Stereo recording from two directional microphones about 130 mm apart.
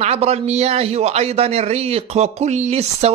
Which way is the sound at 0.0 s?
55° right (ahead or behind).